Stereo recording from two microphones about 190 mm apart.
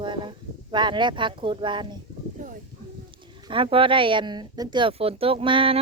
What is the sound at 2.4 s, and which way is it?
Speech, 40° right (ahead or behind).